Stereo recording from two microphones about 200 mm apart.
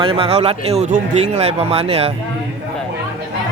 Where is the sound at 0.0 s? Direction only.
25° right (ahead or behind).